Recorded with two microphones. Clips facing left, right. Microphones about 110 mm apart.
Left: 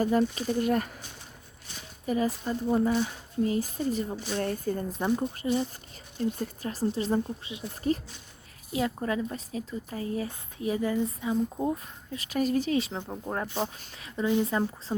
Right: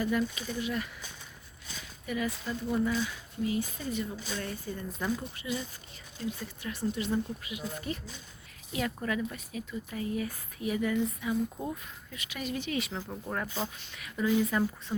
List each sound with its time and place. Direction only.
0.0 s speech: 40° left (ahead or behind)
2.0 s speech: 35° left (ahead or behind)
5.4 s speech: 35° left (ahead or behind)